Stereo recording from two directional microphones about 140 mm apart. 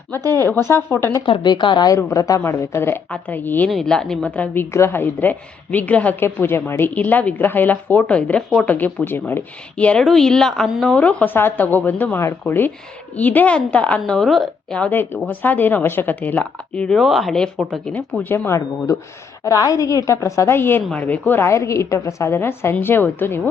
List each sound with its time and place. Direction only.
0.3 s a woman's voice: 15° left (ahead or behind)
1.2 s a woman's voice: 30° left (ahead or behind); by 3.7 s 15° left (ahead or behind)
3.7 s a woman's voice: 5° left (ahead or behind)